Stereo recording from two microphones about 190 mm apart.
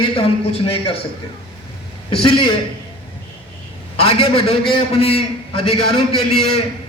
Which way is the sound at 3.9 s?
30° left (ahead or behind).